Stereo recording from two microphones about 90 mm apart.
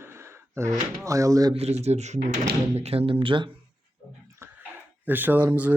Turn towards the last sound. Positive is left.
turn(degrees=-20)  # may be behind; listen again after turning